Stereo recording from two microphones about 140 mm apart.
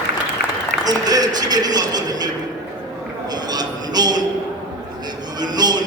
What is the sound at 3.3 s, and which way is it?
Music, 30° right (ahead or behind).